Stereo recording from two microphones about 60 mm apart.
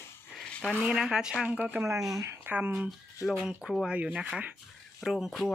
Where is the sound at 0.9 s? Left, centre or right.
Centre.